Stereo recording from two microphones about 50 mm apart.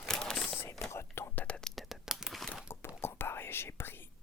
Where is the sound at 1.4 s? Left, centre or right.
Left.